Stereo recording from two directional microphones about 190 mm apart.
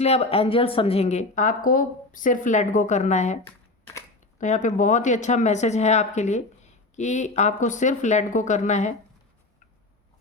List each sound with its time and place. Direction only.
0.0 s speech: 35° left (ahead or behind)
4.4 s speech: 40° left (ahead or behind)